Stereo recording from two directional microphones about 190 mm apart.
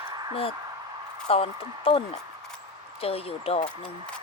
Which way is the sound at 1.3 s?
30° left (ahead or behind).